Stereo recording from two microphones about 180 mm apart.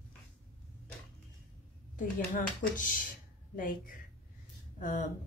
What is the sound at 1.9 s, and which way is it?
Speech, 45° left (ahead or behind).